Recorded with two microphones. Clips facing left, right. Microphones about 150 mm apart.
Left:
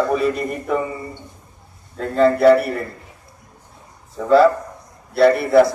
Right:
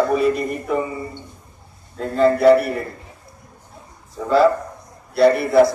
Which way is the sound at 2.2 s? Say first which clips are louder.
Even; centre (ahead or behind).